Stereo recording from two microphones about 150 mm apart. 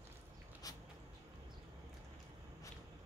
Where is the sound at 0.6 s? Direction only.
25° left (ahead or behind).